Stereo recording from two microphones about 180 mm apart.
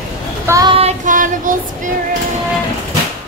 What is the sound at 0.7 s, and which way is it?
Child singing, 40° right (ahead or behind).